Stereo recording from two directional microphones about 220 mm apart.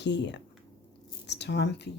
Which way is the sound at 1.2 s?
50° left (ahead or behind).